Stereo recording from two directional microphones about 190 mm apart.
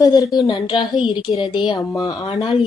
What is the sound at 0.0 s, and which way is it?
A woman's voice, 20° left (ahead or behind).